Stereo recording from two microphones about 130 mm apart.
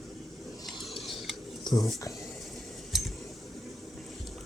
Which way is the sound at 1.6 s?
35° left (ahead or behind).